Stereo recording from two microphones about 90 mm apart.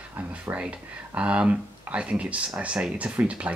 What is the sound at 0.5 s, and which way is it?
Speech, 15° right (ahead or behind).